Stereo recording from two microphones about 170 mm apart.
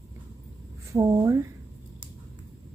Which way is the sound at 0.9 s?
20° right (ahead or behind).